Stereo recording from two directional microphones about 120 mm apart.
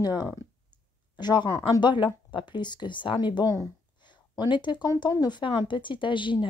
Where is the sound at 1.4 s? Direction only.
25° left (ahead or behind).